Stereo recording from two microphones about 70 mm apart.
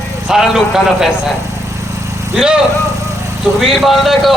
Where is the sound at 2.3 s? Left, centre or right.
Centre.